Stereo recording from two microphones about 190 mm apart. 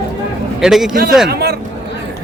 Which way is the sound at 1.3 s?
55° right (ahead or behind).